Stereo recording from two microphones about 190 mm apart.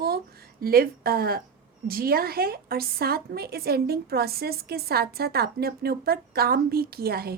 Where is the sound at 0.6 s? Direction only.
50° right (ahead or behind).